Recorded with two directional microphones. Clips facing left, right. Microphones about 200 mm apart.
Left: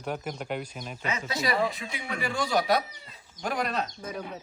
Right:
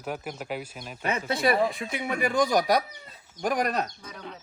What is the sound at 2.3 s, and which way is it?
Speech, 15° right (ahead or behind).